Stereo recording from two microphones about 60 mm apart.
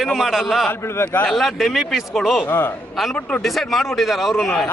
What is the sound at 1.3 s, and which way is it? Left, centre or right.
Speech, centre.